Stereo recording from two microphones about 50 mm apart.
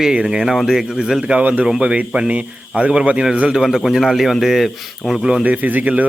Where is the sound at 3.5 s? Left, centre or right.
Centre.